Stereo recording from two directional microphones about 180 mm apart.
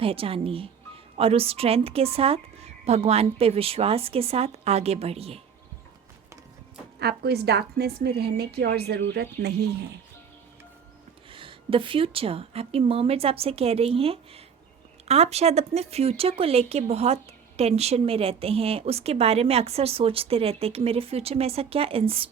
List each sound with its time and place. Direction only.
0.0 s a woman's voice: 30° right (ahead or behind)
7.0 s a woman's voice: 60° right (ahead or behind)
11.3 s a woman's voice: 30° right (ahead or behind)